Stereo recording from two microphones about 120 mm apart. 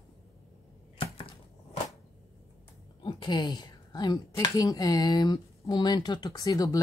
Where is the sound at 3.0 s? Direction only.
40° left (ahead or behind).